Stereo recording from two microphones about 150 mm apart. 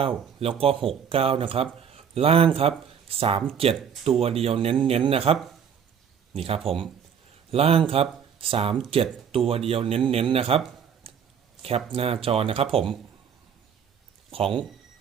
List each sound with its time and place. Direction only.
0.0 s speech: 40° right (ahead or behind)
11.1 s a sound: 40° right (ahead or behind)
11.9 s speech: 40° right (ahead or behind)
14.3 s speech: 40° right (ahead or behind)